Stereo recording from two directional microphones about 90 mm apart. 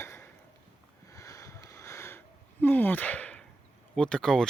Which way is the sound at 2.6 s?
20° left (ahead or behind).